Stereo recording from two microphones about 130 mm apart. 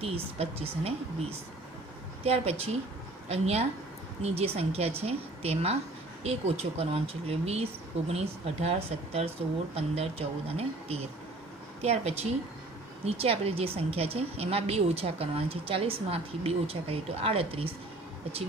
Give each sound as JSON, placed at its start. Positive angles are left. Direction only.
{"t": 0.0, "sound": "a woman's voice", "side_deg": -50}
{"t": 2.2, "sound": "a woman's voice", "side_deg": -50}